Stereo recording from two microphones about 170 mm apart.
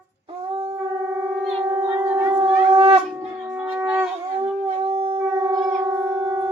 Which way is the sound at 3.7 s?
10° right (ahead or behind).